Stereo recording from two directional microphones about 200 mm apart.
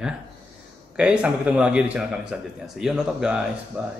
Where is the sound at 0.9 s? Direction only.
5° right (ahead or behind).